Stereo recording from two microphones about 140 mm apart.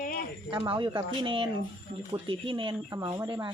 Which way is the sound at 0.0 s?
90° left.